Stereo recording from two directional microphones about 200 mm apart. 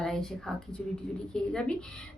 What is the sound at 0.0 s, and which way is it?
A woman's voice, 5° left (ahead or behind).